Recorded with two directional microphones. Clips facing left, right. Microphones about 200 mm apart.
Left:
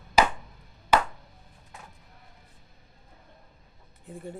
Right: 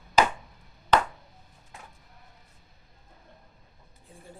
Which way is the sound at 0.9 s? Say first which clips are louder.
Even; 10° left (ahead or behind).